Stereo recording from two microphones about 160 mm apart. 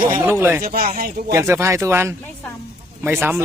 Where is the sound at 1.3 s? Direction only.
20° right (ahead or behind).